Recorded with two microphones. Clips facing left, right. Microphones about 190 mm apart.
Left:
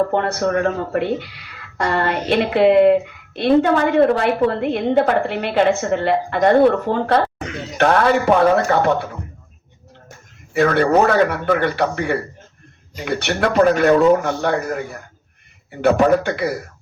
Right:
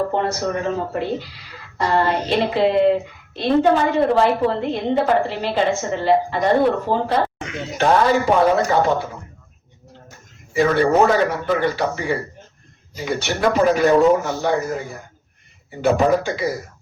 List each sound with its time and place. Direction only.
0.1 s a woman's voice: 60° left (ahead or behind)
10.5 s a woman's voice: 60° left (ahead or behind)
15.8 s a woman's voice: 60° left (ahead or behind)